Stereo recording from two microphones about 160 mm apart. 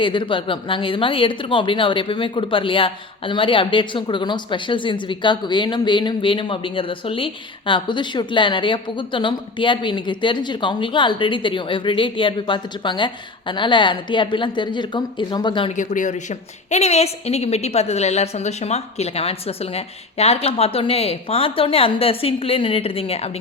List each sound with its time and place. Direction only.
0.0 s a woman's voice: 30° left (ahead or behind)
15.7 s a woman's voice: 55° left (ahead or behind)